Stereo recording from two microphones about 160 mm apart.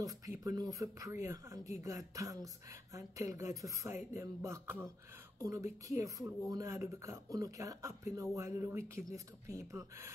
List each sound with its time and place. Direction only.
0.0 s speech: 20° right (ahead or behind)
4.2 s a sound: 20° right (ahead or behind)
5.4 s speech: 20° right (ahead or behind)